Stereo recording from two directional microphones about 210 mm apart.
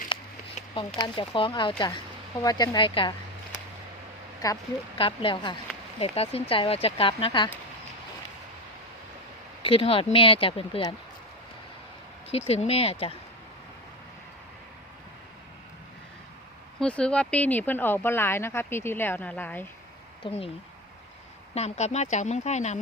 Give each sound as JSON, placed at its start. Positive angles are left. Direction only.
{"t": 0.1, "sound": "a sound", "side_deg": 25}
{"t": 0.9, "sound": "speech", "side_deg": 20}
{"t": 4.4, "sound": "speech", "side_deg": 15}
{"t": 9.6, "sound": "speech", "side_deg": 25}
{"t": 12.3, "sound": "speech", "side_deg": 30}
{"t": 16.8, "sound": "speech", "side_deg": 5}
{"t": 20.2, "sound": "speech", "side_deg": 25}
{"t": 21.5, "sound": "speech", "side_deg": 30}